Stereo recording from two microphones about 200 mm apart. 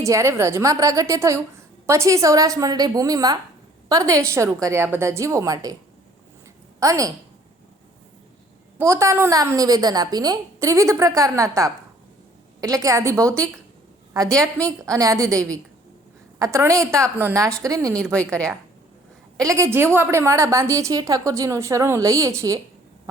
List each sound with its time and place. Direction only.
0.0 s a woman's voice: 15° right (ahead or behind)
6.7 s a woman's voice: 15° right (ahead or behind)
8.8 s a woman's voice: 15° right (ahead or behind)
15.3 s a woman's voice: 5° left (ahead or behind)
16.4 s a woman's voice: 15° right (ahead or behind)
17.9 s a woman's voice: 5° left (ahead or behind)
19.4 s a woman's voice: 15° right (ahead or behind)